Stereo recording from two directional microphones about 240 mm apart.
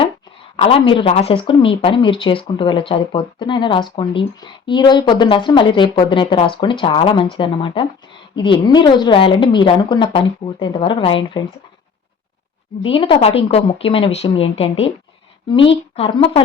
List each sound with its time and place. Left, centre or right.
0.5 s speech: left
12.8 s speech: left